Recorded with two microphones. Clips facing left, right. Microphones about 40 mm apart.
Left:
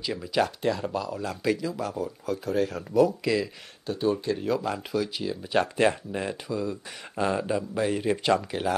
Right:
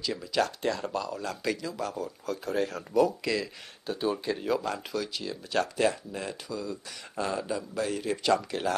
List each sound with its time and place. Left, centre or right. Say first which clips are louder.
0.0 s speech: left 2 dB; centre
5.6 s speech: left 3 dB; left